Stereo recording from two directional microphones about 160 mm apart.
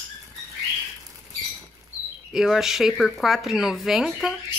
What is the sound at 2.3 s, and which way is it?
Speech, centre (ahead or behind).